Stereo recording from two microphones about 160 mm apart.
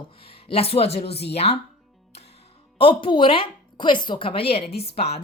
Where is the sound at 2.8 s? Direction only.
35° left (ahead or behind).